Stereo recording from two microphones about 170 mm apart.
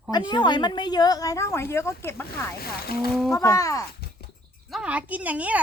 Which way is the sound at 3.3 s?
20° left (ahead or behind).